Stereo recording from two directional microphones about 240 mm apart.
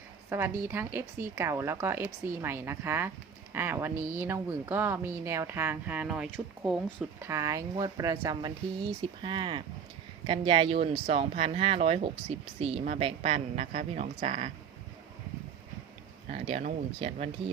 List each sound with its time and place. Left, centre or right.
0.3 s speech: centre; by 14.5 s right
16.3 s speech: right